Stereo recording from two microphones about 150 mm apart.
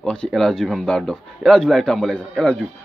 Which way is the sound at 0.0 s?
5° left (ahead or behind).